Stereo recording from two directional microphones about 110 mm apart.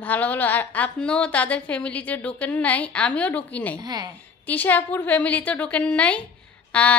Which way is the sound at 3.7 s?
40° right (ahead or behind).